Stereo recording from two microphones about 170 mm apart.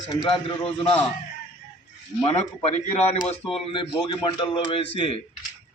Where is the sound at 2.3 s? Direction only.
35° left (ahead or behind).